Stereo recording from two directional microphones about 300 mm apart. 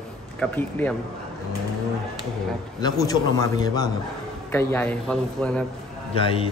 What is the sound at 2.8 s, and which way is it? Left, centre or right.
A man's voice, centre.